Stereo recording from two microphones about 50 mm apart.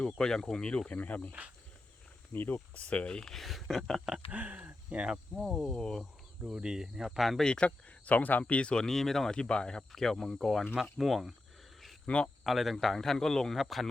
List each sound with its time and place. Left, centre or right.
0.0 s speech: centre
0.9 s speech: left
2.3 s speech: left; by 3.3 s centre
3.3 s speech: centre
4.3 s speech: right
5.0 s speech: centre
5.6 s speech: centre
6.4 s speech: centre
7.3 s speech: centre
7.5 s speech: left
8.8 s speech: centre
9.3 s speech: centre
12.0 s speech: left
12.5 s speech: centre